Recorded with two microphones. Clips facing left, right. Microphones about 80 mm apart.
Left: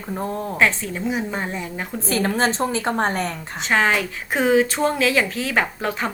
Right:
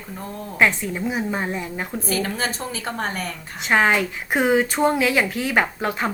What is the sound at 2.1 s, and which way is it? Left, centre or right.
A woman's voice, left.